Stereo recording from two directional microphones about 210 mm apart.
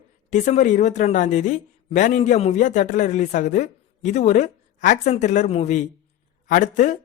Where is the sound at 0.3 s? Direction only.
35° left (ahead or behind).